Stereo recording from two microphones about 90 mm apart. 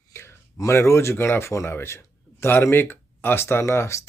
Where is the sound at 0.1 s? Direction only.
30° left (ahead or behind).